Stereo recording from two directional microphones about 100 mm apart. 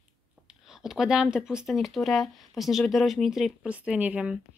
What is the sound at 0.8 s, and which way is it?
Speech, 5° right (ahead or behind).